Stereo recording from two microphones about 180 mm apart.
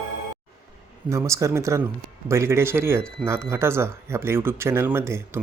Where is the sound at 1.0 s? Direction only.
15° right (ahead or behind).